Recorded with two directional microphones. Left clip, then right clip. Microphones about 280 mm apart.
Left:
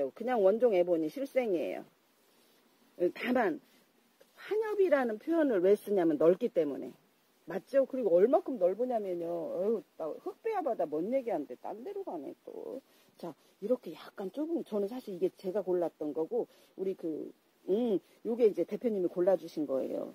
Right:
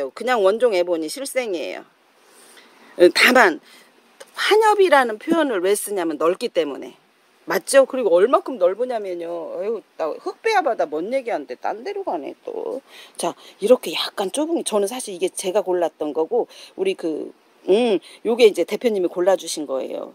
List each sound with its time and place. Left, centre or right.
0.0 s a woman's voice: centre
3.0 s a woman's voice: centre
12.2 s a woman's voice: right
16.8 s a woman's voice: centre